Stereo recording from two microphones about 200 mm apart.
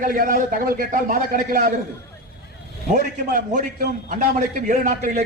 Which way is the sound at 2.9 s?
45° right (ahead or behind).